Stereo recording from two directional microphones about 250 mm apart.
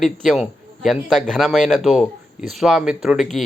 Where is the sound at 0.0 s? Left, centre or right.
Centre.